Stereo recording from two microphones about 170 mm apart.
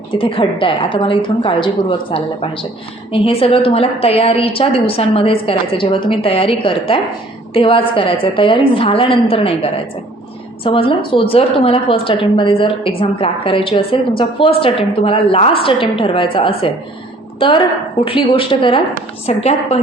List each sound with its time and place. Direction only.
0.1 s a woman's voice: 30° left (ahead or behind)